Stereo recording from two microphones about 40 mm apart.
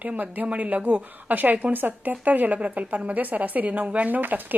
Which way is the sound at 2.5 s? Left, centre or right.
Right.